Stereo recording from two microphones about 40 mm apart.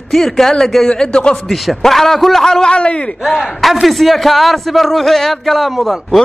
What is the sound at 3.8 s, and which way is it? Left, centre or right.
A man's voice, centre.